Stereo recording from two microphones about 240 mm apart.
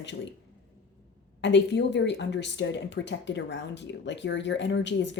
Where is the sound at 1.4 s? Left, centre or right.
Left.